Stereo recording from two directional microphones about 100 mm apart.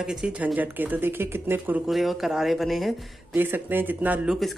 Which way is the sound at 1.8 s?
Centre (ahead or behind).